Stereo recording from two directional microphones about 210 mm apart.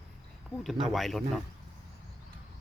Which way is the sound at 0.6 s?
Centre (ahead or behind).